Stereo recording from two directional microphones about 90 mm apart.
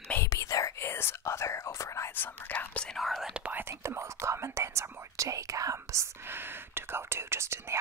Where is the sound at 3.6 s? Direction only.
30° right (ahead or behind).